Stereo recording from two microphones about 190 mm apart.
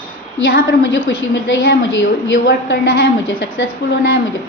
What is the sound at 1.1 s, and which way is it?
Speech, 85° left.